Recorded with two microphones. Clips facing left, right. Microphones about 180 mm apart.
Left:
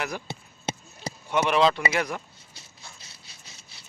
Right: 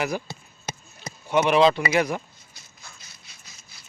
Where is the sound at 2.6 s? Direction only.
30° left (ahead or behind).